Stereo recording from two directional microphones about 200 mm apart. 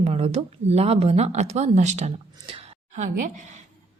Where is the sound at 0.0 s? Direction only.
30° right (ahead or behind).